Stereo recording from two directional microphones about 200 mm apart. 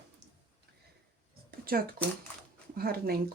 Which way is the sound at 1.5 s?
50° right (ahead or behind).